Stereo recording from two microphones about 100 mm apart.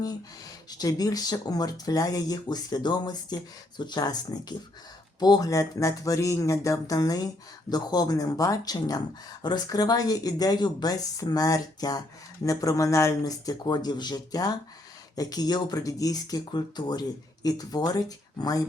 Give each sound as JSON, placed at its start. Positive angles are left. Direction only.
{"t": 0.7, "sound": "speech", "side_deg": 40}